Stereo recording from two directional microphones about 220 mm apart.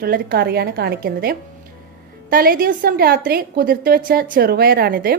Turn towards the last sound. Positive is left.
turn(degrees=-40)  # may be behind; listen again after turning